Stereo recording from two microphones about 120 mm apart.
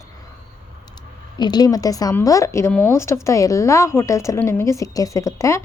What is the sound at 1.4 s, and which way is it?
A woman's voice, 35° left (ahead or behind).